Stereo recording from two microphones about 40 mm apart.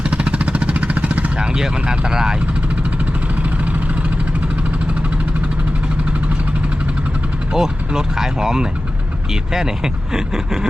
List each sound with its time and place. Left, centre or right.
0.0 s vehicle: right
1.4 s speech: centre
7.5 s speech: centre